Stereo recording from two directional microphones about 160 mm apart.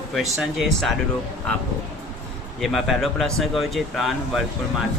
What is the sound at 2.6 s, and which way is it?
Speech, centre (ahead or behind).